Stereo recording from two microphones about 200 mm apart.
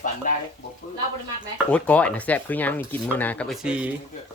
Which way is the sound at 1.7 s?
5° left (ahead or behind).